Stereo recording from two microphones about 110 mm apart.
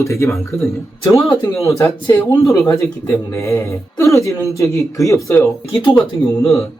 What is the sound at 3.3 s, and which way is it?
Speech, 25° left (ahead or behind).